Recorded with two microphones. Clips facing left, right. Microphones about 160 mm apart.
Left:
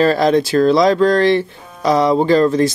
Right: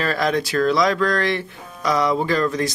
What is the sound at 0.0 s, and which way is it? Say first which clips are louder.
Speech: left 8 dB; 30° left (ahead or behind).